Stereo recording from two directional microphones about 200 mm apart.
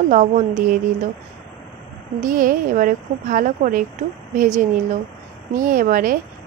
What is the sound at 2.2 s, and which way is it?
Speech, 45° right (ahead or behind).